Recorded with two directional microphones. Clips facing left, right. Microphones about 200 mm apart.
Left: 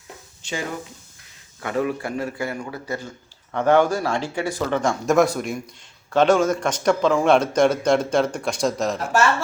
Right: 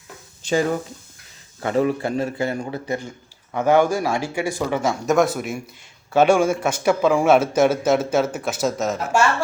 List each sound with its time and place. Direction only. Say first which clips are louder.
1.6 s a man's voice: right 4 dB; 30° right (ahead or behind); by 9.0 s centre (ahead or behind)